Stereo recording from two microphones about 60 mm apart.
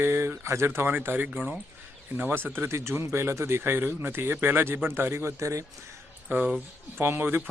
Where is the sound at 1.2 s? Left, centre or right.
Centre.